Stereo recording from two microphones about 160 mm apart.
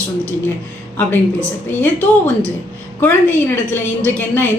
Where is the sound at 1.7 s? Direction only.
10° left (ahead or behind).